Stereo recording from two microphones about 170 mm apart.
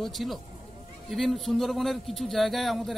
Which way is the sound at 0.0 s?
Centre (ahead or behind).